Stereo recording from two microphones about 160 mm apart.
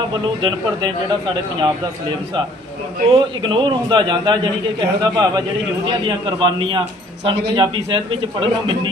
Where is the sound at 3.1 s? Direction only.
30° right (ahead or behind).